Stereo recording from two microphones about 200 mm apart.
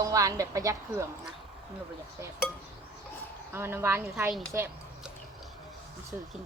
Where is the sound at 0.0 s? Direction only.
15° right (ahead or behind).